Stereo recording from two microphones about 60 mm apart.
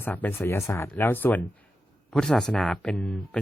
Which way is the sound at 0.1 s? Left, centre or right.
Left.